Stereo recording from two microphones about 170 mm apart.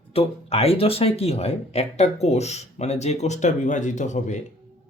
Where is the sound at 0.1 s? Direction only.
35° left (ahead or behind).